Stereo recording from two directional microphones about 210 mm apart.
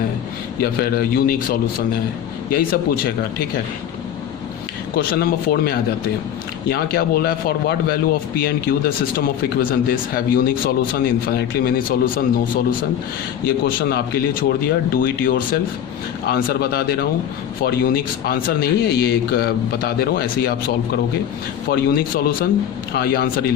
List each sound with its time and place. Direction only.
0.6 s a man's voice: 45° left (ahead or behind)
4.9 s a man's voice: 45° left (ahead or behind)
13.4 s a man's voice: 45° left (ahead or behind)